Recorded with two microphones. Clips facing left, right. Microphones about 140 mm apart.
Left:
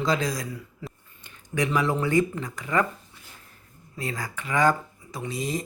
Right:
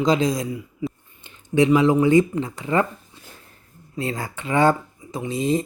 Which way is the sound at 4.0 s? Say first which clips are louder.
Right 5 dB; 25° right (ahead or behind).